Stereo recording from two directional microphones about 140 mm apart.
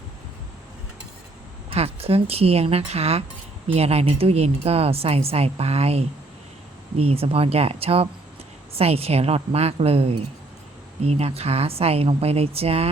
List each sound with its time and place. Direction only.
1.7 s a woman's voice: 45° right (ahead or behind)
7.1 s a woman's voice: 45° right (ahead or behind)
11.1 s a woman's voice: 50° right (ahead or behind)